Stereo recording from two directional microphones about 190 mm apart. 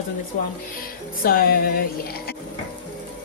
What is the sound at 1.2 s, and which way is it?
Speech, 50° left (ahead or behind).